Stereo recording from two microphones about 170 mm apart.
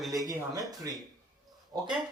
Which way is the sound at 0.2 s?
20° right (ahead or behind).